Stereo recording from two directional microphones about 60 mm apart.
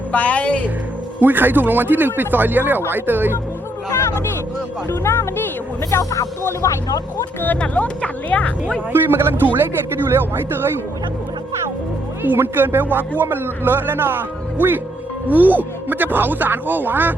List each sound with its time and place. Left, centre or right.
0.1 s speech: left
1.2 s speech: right
4.9 s speech: left
5.9 s speech: left
7.6 s speech: left
8.9 s speech: right
12.2 s speech: right